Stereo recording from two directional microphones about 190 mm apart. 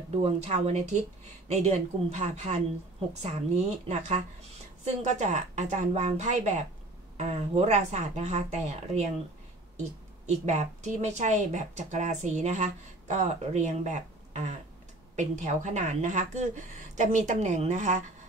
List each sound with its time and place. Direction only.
0.2 s a woman's voice: 35° right (ahead or behind)
10.4 s a woman's voice: 35° right (ahead or behind)